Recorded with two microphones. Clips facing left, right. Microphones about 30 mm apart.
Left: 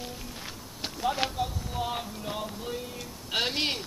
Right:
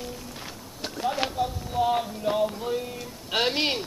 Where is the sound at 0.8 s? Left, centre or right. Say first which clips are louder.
Right 2 dB; centre.